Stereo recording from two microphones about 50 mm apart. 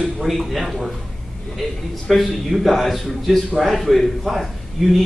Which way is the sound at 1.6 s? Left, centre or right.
Centre.